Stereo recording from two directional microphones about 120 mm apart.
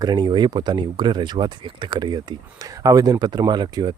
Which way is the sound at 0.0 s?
35° right (ahead or behind).